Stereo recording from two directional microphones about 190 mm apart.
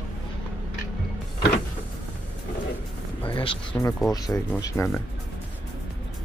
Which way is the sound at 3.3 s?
25° left (ahead or behind).